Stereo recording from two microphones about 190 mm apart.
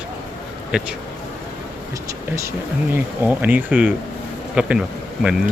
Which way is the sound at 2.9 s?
10° right (ahead or behind).